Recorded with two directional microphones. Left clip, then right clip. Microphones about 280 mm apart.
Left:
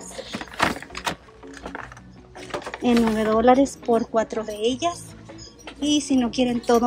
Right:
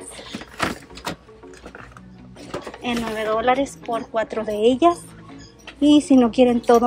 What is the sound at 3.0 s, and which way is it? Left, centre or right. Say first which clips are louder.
Speech: left 1 dB; centre.